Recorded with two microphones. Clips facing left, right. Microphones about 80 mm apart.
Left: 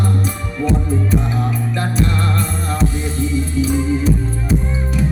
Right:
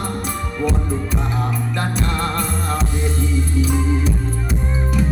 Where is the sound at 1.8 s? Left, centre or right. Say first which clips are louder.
Left 3 dB; right.